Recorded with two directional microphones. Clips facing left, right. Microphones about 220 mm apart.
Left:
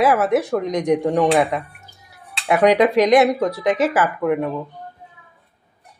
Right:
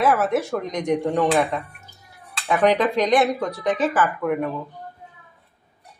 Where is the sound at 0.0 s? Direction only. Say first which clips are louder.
Left 3 dB; 20° left (ahead or behind).